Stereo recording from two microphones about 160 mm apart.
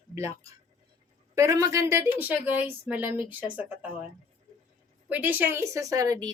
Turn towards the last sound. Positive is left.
turn(degrees=-20)  # may be behind; listen again after turning